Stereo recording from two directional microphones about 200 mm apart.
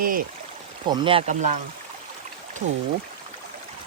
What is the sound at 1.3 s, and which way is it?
Speech, 35° right (ahead or behind).